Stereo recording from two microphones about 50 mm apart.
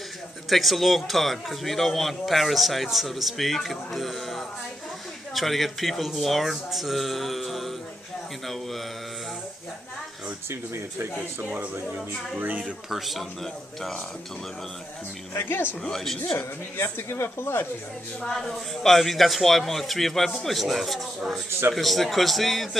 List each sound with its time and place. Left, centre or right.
0.5 s a man's voice: centre
8.5 s mantra: centre
10.5 s speech: right
12.4 s speech: right
12.9 s a man's voice: centre
15.3 s speech: left
15.9 s a man's voice: centre
16.2 s speech: left
18.2 s a man's voice: centre